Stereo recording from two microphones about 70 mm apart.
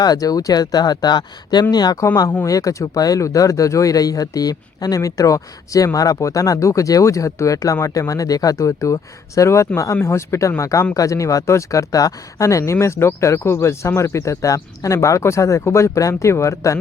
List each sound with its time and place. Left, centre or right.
0.0 s speech: left
1.7 s speech: left
2.4 s speech: left
12.7 s speech: left